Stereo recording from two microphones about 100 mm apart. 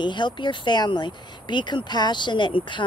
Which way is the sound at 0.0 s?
50° left (ahead or behind).